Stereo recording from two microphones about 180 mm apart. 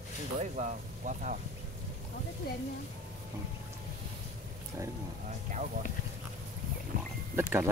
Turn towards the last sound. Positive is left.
turn(degrees=-15)  # may be behind; listen again after turning